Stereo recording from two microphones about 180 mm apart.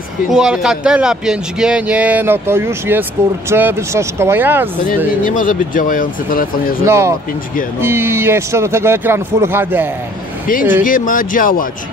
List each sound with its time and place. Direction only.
0.3 s a man's voice: centre (ahead or behind)
5.2 s speech: 50° left (ahead or behind)
6.9 s a man's voice: 15° right (ahead or behind)
10.8 s speech: 45° left (ahead or behind)